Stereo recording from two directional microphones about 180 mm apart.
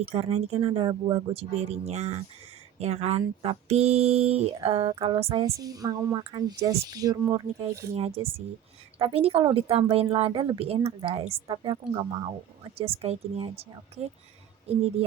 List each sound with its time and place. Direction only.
0.0 s speech: 30° right (ahead or behind)